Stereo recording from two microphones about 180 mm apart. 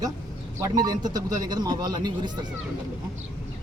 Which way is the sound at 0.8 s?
20° right (ahead or behind).